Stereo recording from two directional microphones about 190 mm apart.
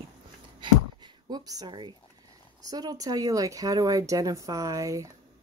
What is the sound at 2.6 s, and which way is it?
Speech, 20° right (ahead or behind).